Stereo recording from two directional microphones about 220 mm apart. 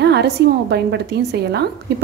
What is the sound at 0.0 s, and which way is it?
A woman's voice, 50° right (ahead or behind).